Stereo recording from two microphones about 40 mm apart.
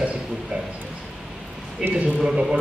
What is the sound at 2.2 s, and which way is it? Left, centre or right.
Speech, centre.